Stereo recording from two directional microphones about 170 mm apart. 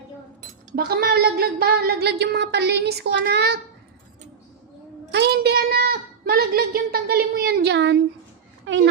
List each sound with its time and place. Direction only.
0.8 s speech: 65° right (ahead or behind)
5.1 s a woman's voice: 80° right